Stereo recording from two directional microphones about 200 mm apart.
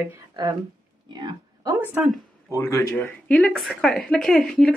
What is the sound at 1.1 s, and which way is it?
Speech, 20° right (ahead or behind).